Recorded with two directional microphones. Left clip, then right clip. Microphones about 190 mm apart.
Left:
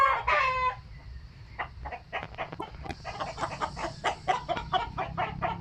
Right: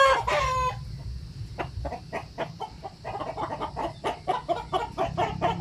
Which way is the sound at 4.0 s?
25° right (ahead or behind).